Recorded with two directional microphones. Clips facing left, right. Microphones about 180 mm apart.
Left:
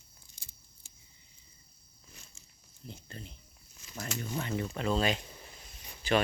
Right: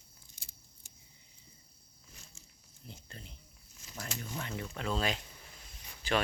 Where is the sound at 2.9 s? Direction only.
Centre (ahead or behind).